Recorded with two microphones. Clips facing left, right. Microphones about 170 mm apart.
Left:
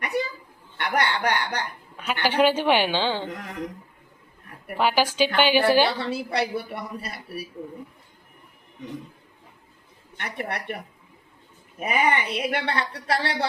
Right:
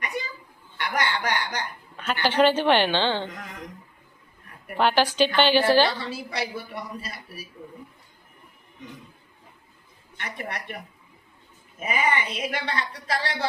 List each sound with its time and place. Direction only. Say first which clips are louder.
0.8 s a woman's voice: left 2 dB; 65° left (ahead or behind)
2.0 s a woman's voice: even; 10° left (ahead or behind)
4.8 s a woman's voice: right 1 dB; 5° left (ahead or behind)
6.0 s a woman's voice: left 5 dB; 65° left (ahead or behind)
10.3 s a woman's voice: left 5 dB; 60° left (ahead or behind)
11.8 s a woman's voice: left 2 dB; 65° left (ahead or behind)